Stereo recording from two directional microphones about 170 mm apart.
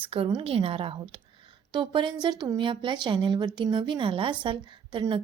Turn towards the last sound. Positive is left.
turn(degrees=-30)  # may be behind; listen again after turning